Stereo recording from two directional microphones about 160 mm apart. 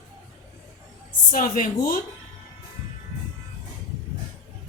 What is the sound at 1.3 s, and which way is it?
Speech, 60° left (ahead or behind).